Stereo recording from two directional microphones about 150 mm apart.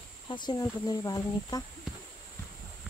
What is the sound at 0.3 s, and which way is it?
Speech, 30° left (ahead or behind).